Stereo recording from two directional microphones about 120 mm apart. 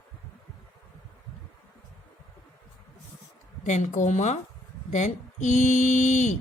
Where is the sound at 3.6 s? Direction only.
80° left.